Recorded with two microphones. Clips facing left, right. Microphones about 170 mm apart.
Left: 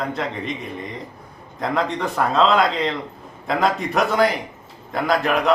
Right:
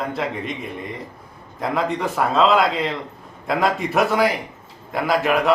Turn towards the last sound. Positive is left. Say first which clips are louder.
# right 1 dB
turn(degrees=0)  # may be behind; listen again after turning